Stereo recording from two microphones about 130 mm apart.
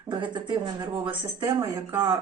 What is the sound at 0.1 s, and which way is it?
Speech, 35° right (ahead or behind).